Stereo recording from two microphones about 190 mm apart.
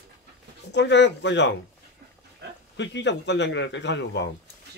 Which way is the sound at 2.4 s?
60° right (ahead or behind).